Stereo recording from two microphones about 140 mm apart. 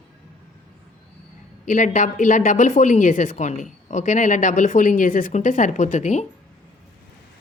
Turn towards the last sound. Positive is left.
turn(degrees=60)  # may be behind; listen again after turning